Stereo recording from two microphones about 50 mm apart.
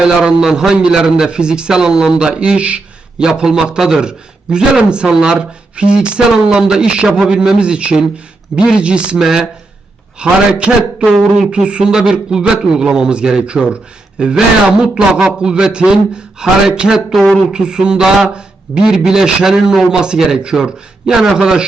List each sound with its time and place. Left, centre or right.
0.2 s a man's voice: centre
10.2 s a man's voice: centre